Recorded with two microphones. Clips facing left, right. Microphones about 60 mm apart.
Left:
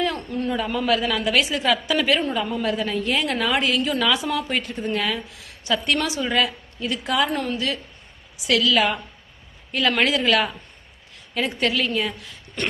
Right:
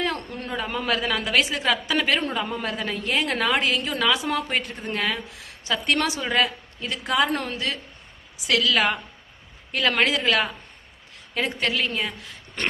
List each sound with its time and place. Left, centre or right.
0.0 s a sound: right
0.7 s a woman's voice: right
4.3 s a woman's voice: right
6.0 s a woman's voice: right
6.2 s a woman's voice: right
8.4 s a woman's voice: right
10.1 s a woman's voice: right